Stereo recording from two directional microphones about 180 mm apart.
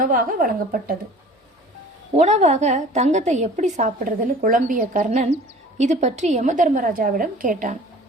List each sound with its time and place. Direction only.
0.0 s a woman's voice: 50° right (ahead or behind)
2.1 s a woman's voice: 40° right (ahead or behind)